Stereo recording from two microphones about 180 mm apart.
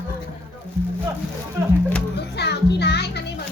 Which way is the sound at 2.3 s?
65° left (ahead or behind).